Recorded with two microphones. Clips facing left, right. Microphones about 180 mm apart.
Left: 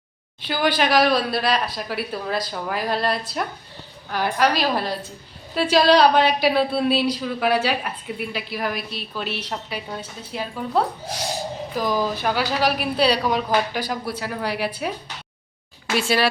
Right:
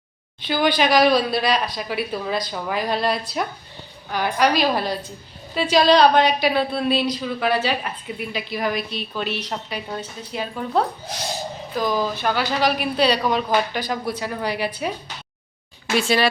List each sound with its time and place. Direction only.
0.4 s a woman's voice: 5° left (ahead or behind)
16.0 s a woman's voice: 5° left (ahead or behind)